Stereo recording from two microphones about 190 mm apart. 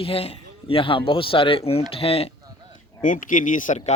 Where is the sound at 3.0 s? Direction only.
45° left (ahead or behind).